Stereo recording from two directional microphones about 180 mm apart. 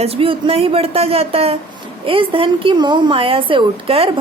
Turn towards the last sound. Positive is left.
turn(degrees=-30)  # may be behind; listen again after turning